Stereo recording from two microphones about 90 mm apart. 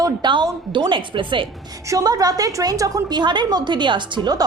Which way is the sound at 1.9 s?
45° right (ahead or behind).